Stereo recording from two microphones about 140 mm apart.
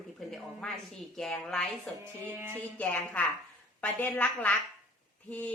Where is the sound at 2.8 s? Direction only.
10° left (ahead or behind).